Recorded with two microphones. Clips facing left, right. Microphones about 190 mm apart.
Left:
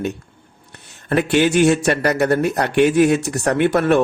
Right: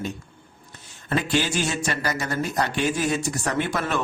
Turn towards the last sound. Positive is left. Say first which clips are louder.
# left 10 dB
turn(degrees=60)  # may be behind; listen again after turning